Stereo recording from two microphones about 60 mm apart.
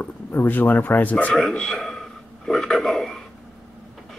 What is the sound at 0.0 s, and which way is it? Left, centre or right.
Speech, left.